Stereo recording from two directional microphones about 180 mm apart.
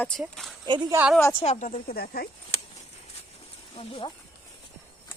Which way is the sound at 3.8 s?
30° left (ahead or behind).